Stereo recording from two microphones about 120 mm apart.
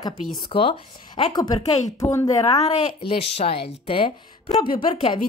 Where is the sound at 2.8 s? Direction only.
45° left (ahead or behind).